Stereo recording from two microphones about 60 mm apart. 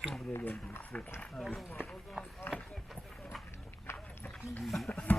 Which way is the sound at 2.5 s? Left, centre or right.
Left.